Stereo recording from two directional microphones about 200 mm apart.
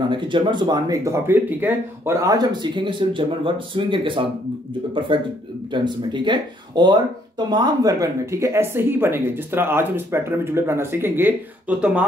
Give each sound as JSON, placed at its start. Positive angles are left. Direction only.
{"t": 0.1, "sound": "speech", "side_deg": -25}